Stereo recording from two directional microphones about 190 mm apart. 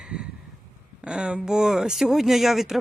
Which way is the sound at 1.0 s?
5° right (ahead or behind).